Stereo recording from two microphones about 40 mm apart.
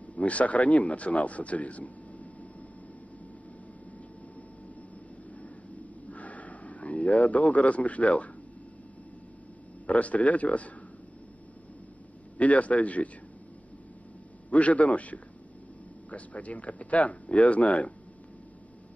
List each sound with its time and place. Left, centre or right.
0.1 s a man's voice: left
6.0 s a sound: left
9.8 s a man's voice: left
12.4 s a man's voice: left
14.5 s a man's voice: left